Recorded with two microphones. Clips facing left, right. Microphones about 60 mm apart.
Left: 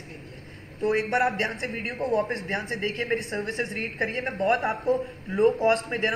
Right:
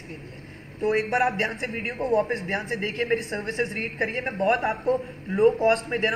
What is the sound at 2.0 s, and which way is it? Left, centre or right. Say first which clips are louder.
Speech: right 2 dB; right.